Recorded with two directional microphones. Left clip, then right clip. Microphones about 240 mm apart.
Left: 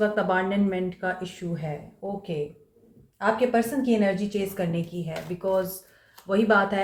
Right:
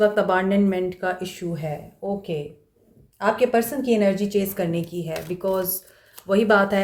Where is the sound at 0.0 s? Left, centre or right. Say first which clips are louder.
Right 5 dB; right.